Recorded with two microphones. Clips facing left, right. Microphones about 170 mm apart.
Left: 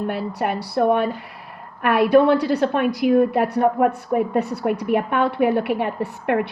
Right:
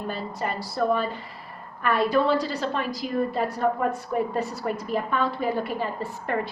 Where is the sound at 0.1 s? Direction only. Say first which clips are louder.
Left 6 dB; 70° left (ahead or behind).